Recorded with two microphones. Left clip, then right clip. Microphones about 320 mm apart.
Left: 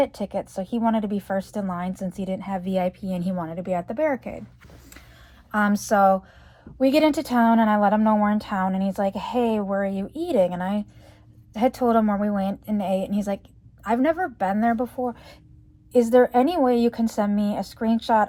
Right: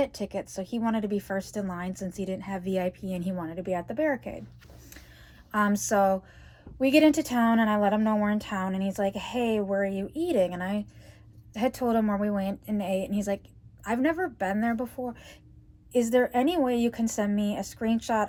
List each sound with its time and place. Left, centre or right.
0.0 s a woman's voice: centre
5.5 s a woman's voice: left